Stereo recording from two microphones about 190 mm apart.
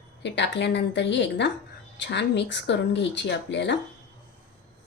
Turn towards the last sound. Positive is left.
turn(degrees=70)  # may be behind; listen again after turning